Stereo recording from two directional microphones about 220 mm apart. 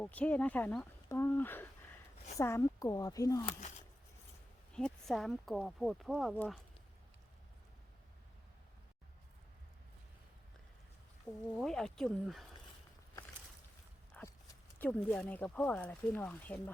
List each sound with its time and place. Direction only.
0.0 s speech: 5° left (ahead or behind)
4.7 s speech: 5° left (ahead or behind)
11.5 s speech: centre (ahead or behind)
14.1 s a sound: 10° left (ahead or behind)
14.8 s speech: 5° left (ahead or behind)